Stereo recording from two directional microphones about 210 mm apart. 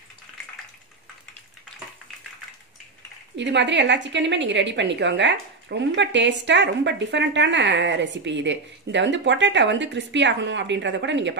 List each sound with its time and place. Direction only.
3.3 s a woman's voice: 55° right (ahead or behind)